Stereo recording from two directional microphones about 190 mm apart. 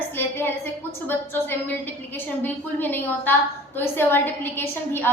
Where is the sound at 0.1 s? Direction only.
10° left (ahead or behind).